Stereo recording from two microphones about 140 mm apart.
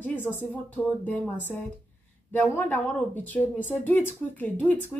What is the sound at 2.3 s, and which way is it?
A woman's voice, 15° left (ahead or behind).